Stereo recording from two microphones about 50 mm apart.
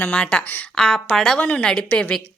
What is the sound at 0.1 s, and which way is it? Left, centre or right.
Speech, left.